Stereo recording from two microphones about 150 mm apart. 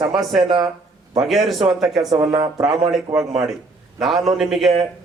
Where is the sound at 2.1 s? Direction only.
25° right (ahead or behind).